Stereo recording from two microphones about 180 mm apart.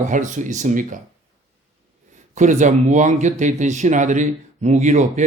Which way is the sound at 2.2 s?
40° right (ahead or behind).